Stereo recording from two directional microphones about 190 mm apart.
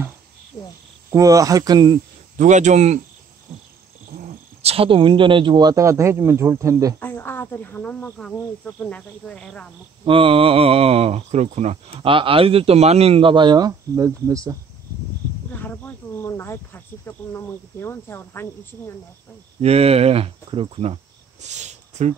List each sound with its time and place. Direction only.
1.1 s speech: 15° right (ahead or behind)
2.3 s speech: 40° right (ahead or behind)
4.6 s speech: 30° right (ahead or behind)
7.0 s speech: 10° left (ahead or behind)
10.0 s speech: 30° right (ahead or behind)
15.5 s speech: 10° left (ahead or behind)
19.6 s speech: 35° right (ahead or behind)